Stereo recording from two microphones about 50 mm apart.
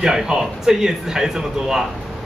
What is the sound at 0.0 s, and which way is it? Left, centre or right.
A man's voice, centre.